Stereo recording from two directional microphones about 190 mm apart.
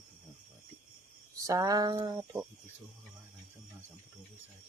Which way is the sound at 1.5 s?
20° right (ahead or behind).